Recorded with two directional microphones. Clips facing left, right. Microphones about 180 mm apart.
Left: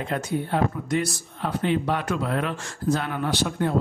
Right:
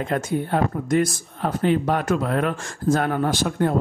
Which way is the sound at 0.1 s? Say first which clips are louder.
Right 2 dB; 45° right (ahead or behind).